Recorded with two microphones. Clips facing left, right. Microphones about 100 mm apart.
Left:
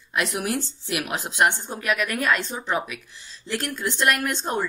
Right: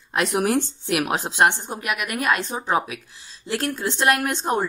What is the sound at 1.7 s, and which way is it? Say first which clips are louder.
A woman's voice: left 2 dB; 20° right (ahead or behind).